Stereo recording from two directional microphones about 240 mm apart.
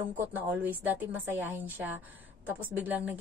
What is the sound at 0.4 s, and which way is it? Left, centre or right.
A woman's voice, centre.